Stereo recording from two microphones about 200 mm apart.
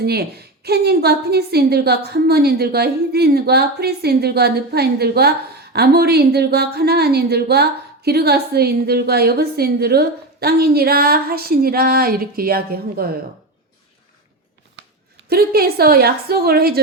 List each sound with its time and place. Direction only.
0.0 s a woman's voice: 55° right (ahead or behind)
15.3 s a woman's voice: 50° right (ahead or behind)